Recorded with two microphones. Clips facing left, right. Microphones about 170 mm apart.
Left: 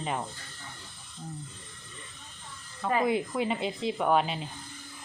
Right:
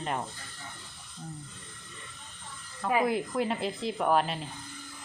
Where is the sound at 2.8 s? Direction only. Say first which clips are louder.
Even; 5° right (ahead or behind).